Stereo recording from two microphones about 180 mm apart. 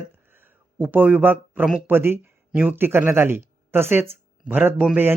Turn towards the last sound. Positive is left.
turn(degrees=-10)  # may be behind; listen again after turning